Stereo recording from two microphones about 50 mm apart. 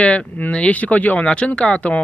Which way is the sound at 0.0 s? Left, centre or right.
Left.